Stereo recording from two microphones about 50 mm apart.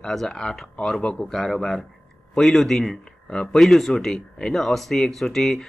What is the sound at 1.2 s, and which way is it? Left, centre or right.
Speech, centre.